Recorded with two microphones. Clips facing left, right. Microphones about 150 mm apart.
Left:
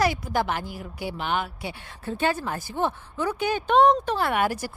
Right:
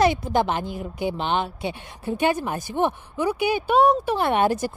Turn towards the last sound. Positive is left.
turn(degrees=-25)  # may be behind; listen again after turning